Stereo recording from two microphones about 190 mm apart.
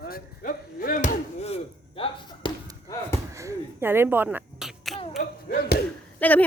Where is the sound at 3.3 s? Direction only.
15° right (ahead or behind).